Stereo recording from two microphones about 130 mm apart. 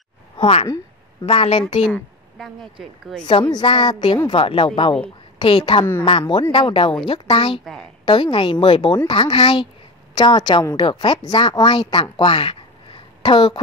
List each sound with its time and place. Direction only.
0.4 s a woman's voice: 50° left (ahead or behind)
1.9 s a woman's voice: 5° left (ahead or behind)
3.3 s a woman's voice: 35° left (ahead or behind)
7.6 s a woman's voice: 5° left (ahead or behind)
8.0 s a woman's voice: 40° left (ahead or behind)